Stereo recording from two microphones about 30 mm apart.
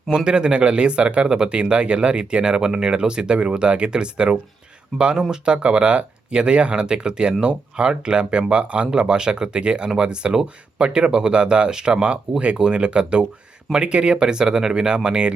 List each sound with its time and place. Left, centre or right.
0.3 s speech: right
9.0 s speech: right